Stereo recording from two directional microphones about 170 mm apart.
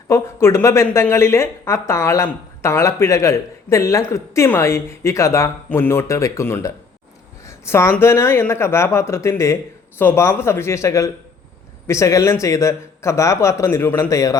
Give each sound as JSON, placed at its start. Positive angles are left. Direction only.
{"t": 0.1, "sound": "speech", "side_deg": 15}